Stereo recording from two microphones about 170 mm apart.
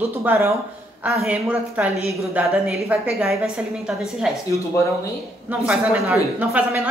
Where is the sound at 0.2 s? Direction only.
15° right (ahead or behind).